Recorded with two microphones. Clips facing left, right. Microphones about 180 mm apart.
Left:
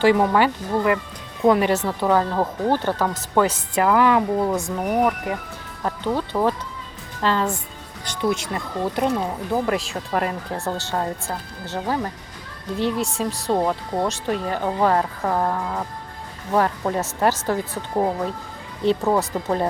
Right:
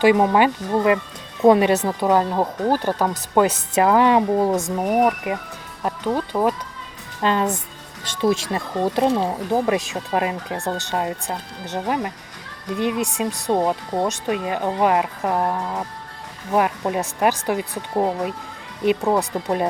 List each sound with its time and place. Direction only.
0.0 s speech: 20° right (ahead or behind)